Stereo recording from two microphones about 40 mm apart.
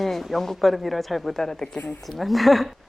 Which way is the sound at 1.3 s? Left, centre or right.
Centre.